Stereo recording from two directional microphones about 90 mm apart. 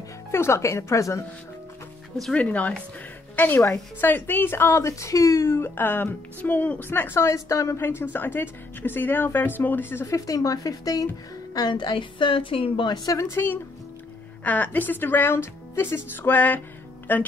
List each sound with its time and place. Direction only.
0.3 s a woman's voice: 30° left (ahead or behind)
2.3 s a woman's voice: 15° left (ahead or behind); by 7.8 s 35° left (ahead or behind)
7.8 s a woman's voice: 20° left (ahead or behind)
10.0 s a woman's voice: 40° left (ahead or behind)
11.5 s a woman's voice: 50° left (ahead or behind); by 12.9 s 80° left
12.9 s a woman's voice: 40° left (ahead or behind)
14.4 s a woman's voice: 15° left (ahead or behind)